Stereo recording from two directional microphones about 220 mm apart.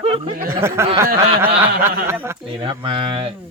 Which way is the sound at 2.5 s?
25° right (ahead or behind).